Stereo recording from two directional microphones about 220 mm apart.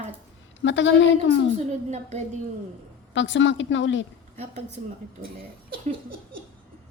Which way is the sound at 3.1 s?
55° left (ahead or behind).